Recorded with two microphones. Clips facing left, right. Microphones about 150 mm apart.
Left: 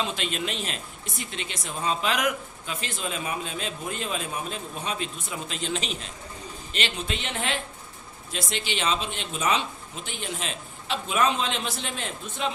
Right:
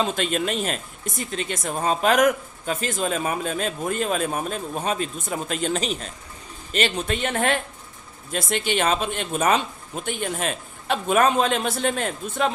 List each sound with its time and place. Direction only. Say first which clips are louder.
0.0 s speech: right 6 dB; 45° right (ahead or behind)